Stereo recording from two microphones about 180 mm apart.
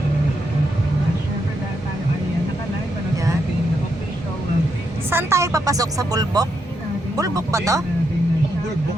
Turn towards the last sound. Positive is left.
turn(degrees=-20)  # may be behind; listen again after turning